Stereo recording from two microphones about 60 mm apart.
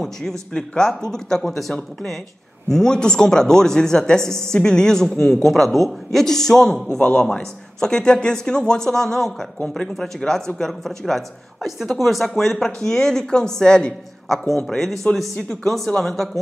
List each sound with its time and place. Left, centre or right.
0.0 s a woman's voice: centre
15.6 s speech: centre